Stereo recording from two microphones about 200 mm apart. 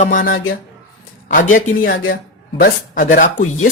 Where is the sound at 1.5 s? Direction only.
45° left (ahead or behind).